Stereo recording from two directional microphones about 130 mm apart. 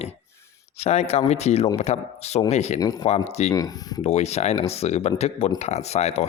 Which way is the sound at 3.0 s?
55° left (ahead or behind).